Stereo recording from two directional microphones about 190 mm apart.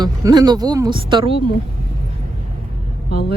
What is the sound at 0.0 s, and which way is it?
Speech, 20° right (ahead or behind).